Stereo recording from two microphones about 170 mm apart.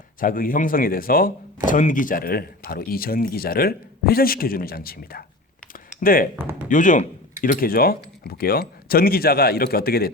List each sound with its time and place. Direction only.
0.2 s speech: 55° left (ahead or behind)
6.3 s speech: 10° right (ahead or behind)
6.7 s speech: 50° left (ahead or behind)